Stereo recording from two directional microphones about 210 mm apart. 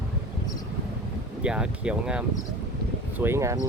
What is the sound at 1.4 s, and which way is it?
Speech, 5° right (ahead or behind).